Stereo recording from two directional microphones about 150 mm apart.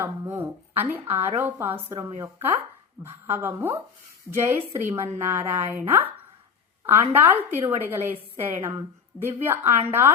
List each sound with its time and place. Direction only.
0.0 s a woman's voice: 15° right (ahead or behind)
7.1 s a woman's voice: 15° right (ahead or behind)